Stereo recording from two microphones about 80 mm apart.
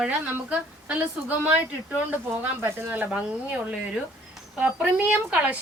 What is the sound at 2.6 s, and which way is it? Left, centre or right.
A woman's voice, right.